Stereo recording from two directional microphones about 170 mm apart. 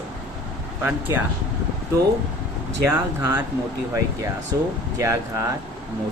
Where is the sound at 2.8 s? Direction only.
15° right (ahead or behind).